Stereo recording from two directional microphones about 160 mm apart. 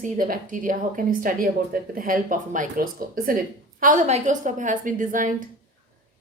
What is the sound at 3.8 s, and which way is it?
A woman's voice, 50° right (ahead or behind).